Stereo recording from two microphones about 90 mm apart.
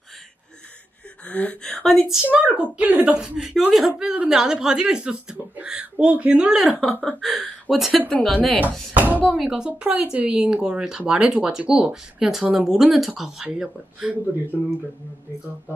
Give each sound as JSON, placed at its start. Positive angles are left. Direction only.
{"t": 1.3, "sound": "a woman's voice", "side_deg": 15}
{"t": 2.3, "sound": "a woman's voice", "side_deg": -15}
{"t": 8.9, "sound": "speech", "side_deg": -20}
{"t": 9.3, "sound": "speech", "side_deg": -5}
{"t": 9.7, "sound": "speech", "side_deg": -15}
{"t": 14.5, "sound": "a woman's voice", "side_deg": 15}